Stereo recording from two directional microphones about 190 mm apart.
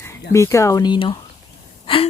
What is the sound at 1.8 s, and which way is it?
Gasp, 30° left (ahead or behind).